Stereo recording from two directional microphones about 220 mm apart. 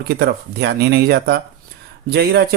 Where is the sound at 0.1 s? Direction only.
50° right (ahead or behind).